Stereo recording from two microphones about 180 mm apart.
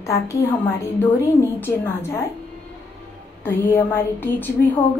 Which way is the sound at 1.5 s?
10° left (ahead or behind).